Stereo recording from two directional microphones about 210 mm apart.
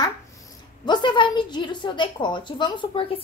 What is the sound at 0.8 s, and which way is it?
A woman's voice, 20° left (ahead or behind).